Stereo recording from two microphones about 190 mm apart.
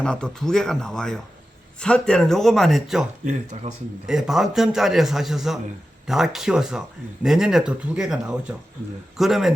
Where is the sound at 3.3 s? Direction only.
35° right (ahead or behind).